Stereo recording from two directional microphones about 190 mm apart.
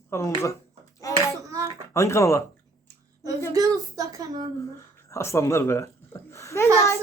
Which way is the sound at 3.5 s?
20° right (ahead or behind).